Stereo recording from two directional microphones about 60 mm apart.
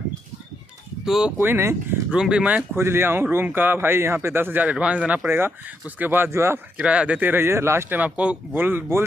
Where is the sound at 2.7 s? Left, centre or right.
Right.